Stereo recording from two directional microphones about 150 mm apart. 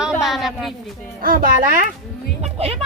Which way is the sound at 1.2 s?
70° right (ahead or behind).